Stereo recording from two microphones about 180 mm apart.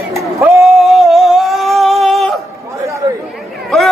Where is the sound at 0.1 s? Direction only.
15° right (ahead or behind).